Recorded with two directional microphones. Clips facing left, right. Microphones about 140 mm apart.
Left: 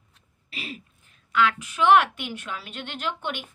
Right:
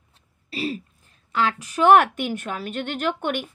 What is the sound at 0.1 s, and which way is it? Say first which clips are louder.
A woman's voice: right 8 dB; 35° right (ahead or behind).